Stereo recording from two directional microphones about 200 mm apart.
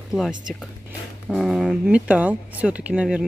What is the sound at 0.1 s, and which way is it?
Speech, centre (ahead or behind).